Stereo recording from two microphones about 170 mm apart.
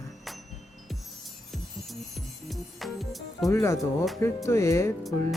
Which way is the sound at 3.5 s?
15° left (ahead or behind).